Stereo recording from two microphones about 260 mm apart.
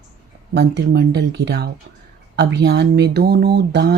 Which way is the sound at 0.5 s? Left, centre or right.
Right.